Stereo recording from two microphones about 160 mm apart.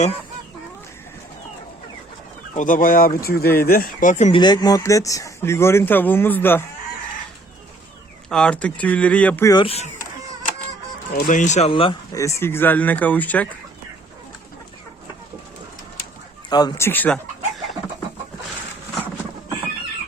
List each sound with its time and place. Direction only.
2.6 s speech: 60° left (ahead or behind)
4.4 s speech: 25° left (ahead or behind)
8.3 s speech: 5° left (ahead or behind)
9.5 s speech: 30° left (ahead or behind)
11.1 s speech: 55° left (ahead or behind)
11.7 s speech: 35° left (ahead or behind)
12.1 s speech: 20° left (ahead or behind)
16.5 s speech: 25° left (ahead or behind)